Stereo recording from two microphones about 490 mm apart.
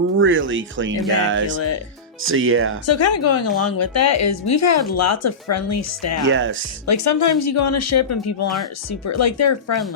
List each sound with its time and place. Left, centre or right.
0.2 s speech: right
2.8 s speech: left
6.2 s speech: right
6.8 s speech: left